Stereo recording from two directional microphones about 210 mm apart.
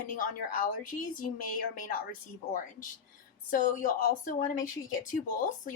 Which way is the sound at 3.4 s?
40° left (ahead or behind).